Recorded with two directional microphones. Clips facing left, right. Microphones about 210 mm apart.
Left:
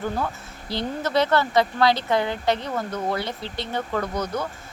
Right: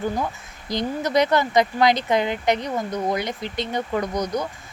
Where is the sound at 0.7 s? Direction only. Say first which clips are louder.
Right 2 dB; 15° right (ahead or behind).